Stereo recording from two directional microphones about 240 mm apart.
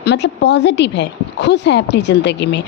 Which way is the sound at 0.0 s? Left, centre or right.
Left.